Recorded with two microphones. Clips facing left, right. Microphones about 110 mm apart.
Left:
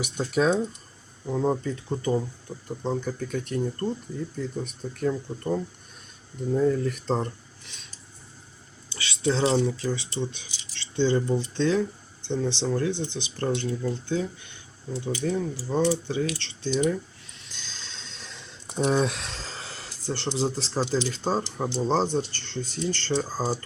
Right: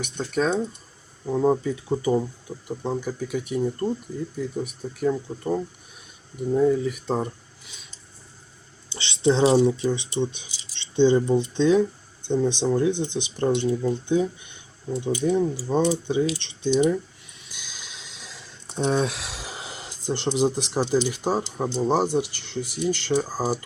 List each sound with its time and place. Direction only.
0.0 s speech: 5° left (ahead or behind)
1.2 s speech: 10° right (ahead or behind)
8.9 s speech: 25° right (ahead or behind)
17.4 s a sound: 10° right (ahead or behind)
18.9 s speech: centre (ahead or behind)